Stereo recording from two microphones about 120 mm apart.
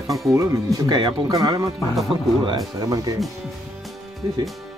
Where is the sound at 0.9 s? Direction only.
40° right (ahead or behind).